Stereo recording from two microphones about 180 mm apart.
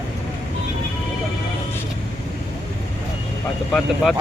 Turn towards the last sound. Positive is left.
turn(degrees=0)  # may be behind; listen again after turning